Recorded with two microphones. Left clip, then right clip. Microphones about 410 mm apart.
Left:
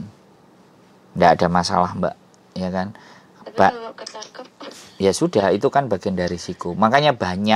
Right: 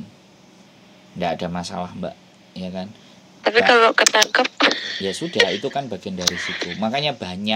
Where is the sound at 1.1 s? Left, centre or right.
Left.